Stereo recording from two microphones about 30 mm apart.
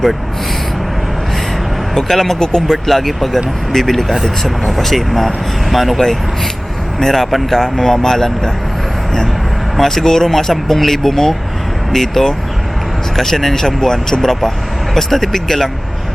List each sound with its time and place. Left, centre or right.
2.0 s speech: centre
7.0 s speech: centre
7.8 s speech: centre
9.7 s speech: centre